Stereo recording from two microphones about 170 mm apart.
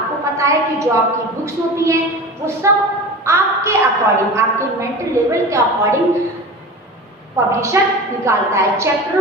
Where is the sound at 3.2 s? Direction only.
15° right (ahead or behind).